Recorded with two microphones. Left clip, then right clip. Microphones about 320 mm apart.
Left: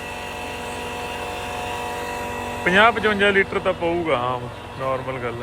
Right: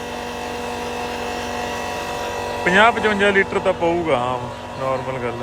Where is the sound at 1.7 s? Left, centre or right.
Right.